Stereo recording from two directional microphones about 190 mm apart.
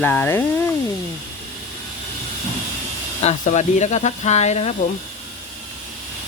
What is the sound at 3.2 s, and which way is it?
Speech, 35° left (ahead or behind).